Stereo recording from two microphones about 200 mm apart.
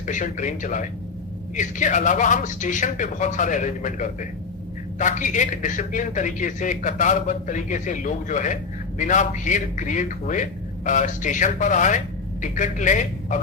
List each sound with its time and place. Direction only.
0.0 s a man's voice: 40° left (ahead or behind)